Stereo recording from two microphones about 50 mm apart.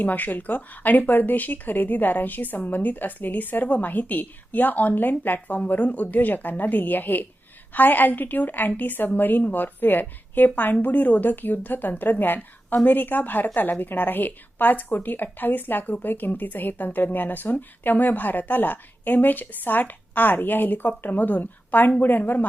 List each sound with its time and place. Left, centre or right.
0.0 s a woman's voice: left